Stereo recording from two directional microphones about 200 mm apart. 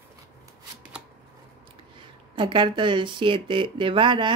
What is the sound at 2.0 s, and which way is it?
Speech, 25° right (ahead or behind).